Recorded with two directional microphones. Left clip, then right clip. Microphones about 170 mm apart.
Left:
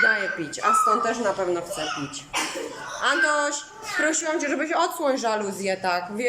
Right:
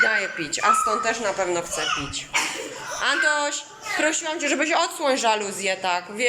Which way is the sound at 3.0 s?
10° left (ahead or behind).